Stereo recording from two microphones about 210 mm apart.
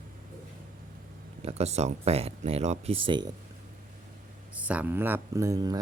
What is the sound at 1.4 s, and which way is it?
Speech, 30° right (ahead or behind).